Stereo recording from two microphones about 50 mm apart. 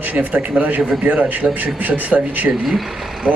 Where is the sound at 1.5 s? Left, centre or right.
Right.